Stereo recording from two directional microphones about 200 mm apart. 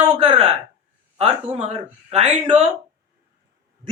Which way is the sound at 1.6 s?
30° right (ahead or behind).